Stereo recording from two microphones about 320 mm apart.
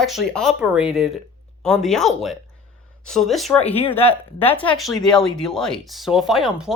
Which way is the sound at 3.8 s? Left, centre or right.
Centre.